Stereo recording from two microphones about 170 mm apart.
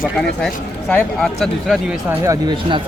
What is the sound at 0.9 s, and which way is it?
Speech, centre (ahead or behind).